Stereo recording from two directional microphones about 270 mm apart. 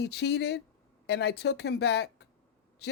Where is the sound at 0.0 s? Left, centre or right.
Left.